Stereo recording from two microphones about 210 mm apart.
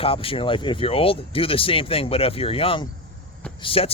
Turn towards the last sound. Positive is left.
turn(degrees=25)  # may be behind; listen again after turning